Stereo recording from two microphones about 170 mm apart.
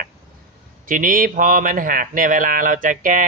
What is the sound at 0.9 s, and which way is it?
Speech, 55° right (ahead or behind).